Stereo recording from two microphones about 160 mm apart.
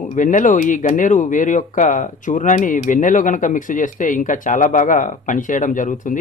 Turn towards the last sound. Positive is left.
turn(degrees=55)  # may be behind; listen again after turning